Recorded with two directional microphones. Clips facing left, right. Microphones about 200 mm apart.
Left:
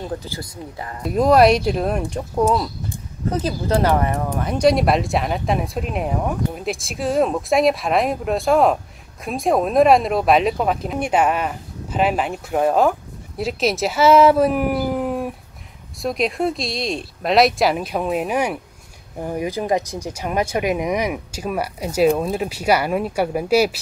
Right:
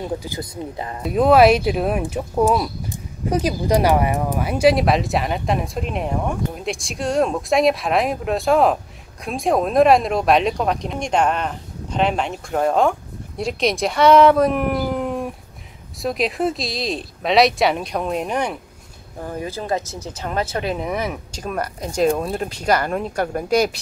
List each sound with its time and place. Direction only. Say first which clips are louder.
0.2 s speech: right 3 dB; 20° right (ahead or behind)
1.0 s speech: right 1 dB; 5° right (ahead or behind)